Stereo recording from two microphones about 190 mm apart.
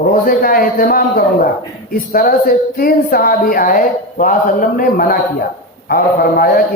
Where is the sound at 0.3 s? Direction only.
50° left (ahead or behind).